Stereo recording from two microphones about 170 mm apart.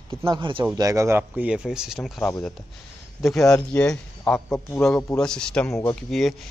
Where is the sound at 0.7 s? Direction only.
20° right (ahead or behind).